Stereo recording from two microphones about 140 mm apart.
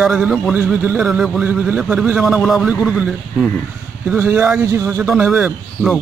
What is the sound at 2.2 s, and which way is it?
A man's voice, centre (ahead or behind).